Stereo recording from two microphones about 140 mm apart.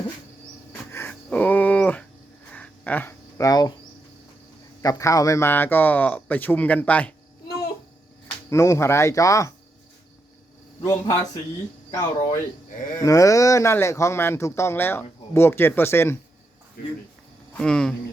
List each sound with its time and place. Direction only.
0.9 s a sound: 15° left (ahead or behind)
4.8 s a man's voice: 25° left (ahead or behind)
8.4 s speech: 20° left (ahead or behind)
10.8 s speech: 25° left (ahead or behind)
17.6 s speech: 5° left (ahead or behind)